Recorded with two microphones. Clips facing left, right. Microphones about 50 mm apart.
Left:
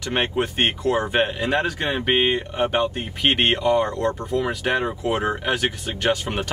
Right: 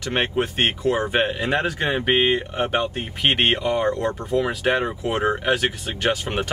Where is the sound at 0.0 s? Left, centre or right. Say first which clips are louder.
Even; centre.